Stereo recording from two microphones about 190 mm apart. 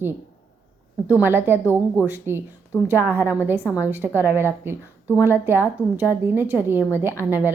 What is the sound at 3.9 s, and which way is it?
A woman's voice, 10° right (ahead or behind).